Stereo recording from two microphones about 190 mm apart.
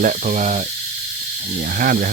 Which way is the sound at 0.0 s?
40° right (ahead or behind).